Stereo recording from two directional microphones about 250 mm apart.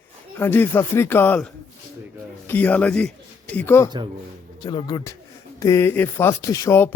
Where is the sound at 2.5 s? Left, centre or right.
Centre.